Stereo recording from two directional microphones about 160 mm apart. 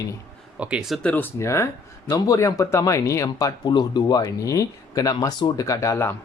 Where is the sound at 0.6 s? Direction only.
5° right (ahead or behind); by 6.1 s 15° left (ahead or behind).